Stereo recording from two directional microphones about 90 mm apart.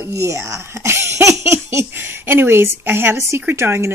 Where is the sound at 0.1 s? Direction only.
35° right (ahead or behind).